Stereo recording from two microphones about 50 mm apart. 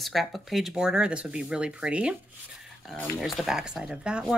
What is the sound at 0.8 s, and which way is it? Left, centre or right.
Speech, centre.